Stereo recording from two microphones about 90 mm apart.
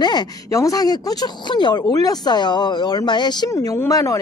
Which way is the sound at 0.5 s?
40° left (ahead or behind).